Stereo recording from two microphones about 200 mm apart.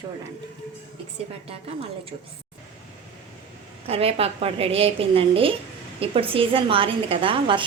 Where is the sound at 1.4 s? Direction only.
30° right (ahead or behind).